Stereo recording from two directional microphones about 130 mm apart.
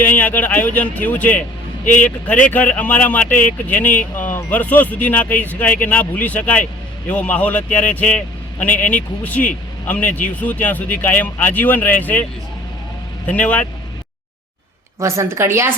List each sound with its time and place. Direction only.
0.0 s speech: 15° left (ahead or behind)
9.8 s speech: 10° left (ahead or behind)
13.2 s speech: 10° left (ahead or behind)
14.9 s a woman's voice: 25° right (ahead or behind)